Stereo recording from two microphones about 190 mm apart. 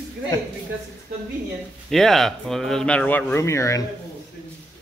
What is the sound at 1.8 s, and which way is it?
Speech, centre (ahead or behind).